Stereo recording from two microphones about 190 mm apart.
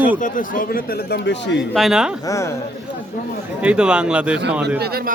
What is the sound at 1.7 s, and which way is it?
Speech, centre (ahead or behind).